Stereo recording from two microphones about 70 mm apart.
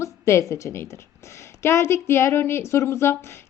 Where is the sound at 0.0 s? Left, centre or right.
Left.